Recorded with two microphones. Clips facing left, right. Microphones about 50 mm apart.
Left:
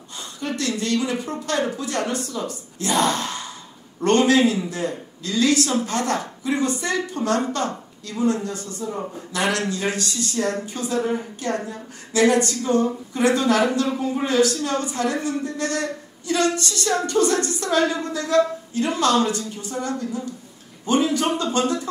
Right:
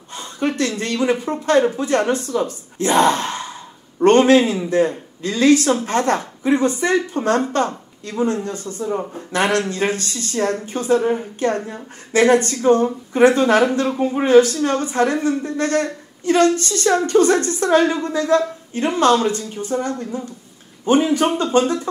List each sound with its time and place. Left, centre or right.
0.1 s a man's voice: right